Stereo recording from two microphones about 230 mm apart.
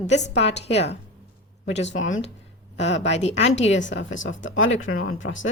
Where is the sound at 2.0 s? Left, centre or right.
Left.